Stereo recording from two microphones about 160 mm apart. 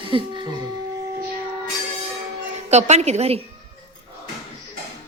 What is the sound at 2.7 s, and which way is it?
Speech, 45° right (ahead or behind).